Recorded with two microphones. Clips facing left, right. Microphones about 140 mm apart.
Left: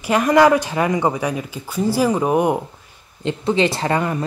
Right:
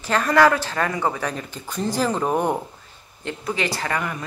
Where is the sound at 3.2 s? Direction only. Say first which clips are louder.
Left 8 dB; 20° left (ahead or behind).